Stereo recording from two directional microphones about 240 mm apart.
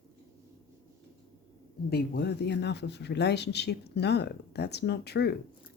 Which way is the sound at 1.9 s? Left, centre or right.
Left.